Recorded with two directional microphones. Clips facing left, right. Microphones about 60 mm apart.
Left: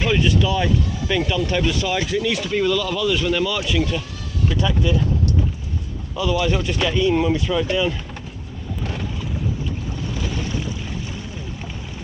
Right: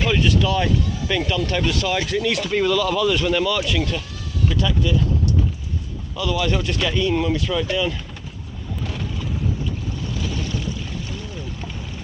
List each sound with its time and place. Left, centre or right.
0.0 s speech: centre
4.4 s speech: left
6.4 s speech: centre
8.8 s boat: centre
10.2 s boat: left